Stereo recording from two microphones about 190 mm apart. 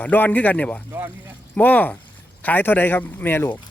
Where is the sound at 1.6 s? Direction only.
10° left (ahead or behind).